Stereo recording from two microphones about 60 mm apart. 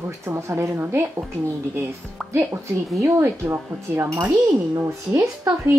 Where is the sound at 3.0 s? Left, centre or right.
Right.